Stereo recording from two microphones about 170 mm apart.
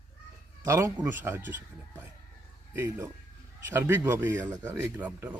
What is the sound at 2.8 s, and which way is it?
Speech, 15° right (ahead or behind).